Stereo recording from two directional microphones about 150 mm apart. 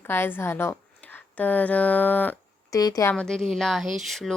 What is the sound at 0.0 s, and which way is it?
A woman's voice, 15° left (ahead or behind).